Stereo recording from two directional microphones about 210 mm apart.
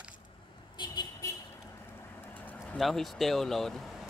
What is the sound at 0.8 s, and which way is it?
Vehicle, 20° left (ahead or behind).